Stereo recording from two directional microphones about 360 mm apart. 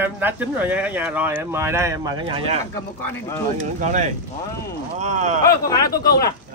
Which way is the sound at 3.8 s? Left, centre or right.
Centre.